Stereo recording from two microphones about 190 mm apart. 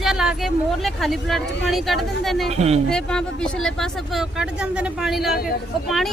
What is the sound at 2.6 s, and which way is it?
Speech, 35° right (ahead or behind).